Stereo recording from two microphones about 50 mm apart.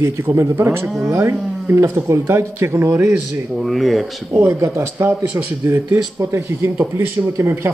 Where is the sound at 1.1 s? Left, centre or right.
Right.